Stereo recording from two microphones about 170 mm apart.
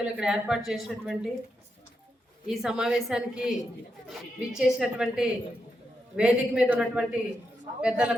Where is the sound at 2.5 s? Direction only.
5° right (ahead or behind).